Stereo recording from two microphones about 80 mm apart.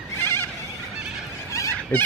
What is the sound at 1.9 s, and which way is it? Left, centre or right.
Speech, left.